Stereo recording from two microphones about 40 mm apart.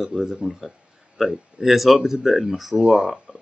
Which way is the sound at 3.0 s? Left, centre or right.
Centre.